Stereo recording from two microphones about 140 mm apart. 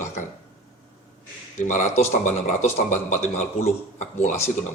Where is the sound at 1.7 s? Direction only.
60° left (ahead or behind).